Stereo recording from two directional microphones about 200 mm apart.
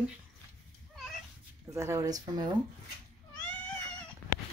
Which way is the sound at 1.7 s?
15° right (ahead or behind).